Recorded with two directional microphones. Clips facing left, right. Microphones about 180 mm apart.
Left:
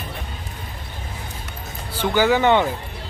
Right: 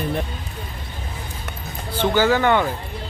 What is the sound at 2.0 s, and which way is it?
Speech, 15° left (ahead or behind).